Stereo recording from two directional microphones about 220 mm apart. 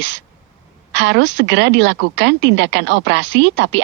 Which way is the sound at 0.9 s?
55° right (ahead or behind).